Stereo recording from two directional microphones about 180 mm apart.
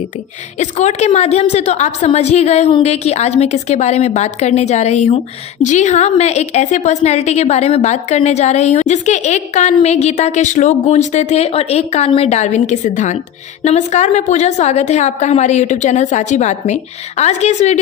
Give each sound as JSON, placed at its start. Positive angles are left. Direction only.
{"t": 0.6, "sound": "a woman's voice", "side_deg": 40}